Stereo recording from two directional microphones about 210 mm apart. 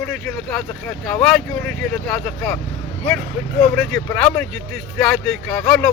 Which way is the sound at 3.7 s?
5° left (ahead or behind).